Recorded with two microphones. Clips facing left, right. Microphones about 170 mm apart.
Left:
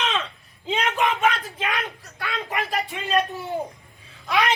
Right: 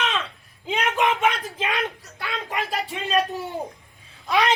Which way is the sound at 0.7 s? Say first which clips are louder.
Right 1 dB; 15° right (ahead or behind).